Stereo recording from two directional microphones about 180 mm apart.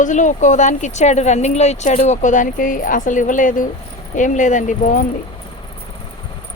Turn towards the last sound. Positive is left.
turn(degrees=45)  # may be behind; listen again after turning